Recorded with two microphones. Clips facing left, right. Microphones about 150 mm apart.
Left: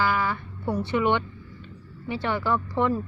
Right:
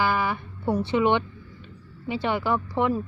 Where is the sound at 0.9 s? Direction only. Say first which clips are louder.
Right 1 dB; 20° right (ahead or behind).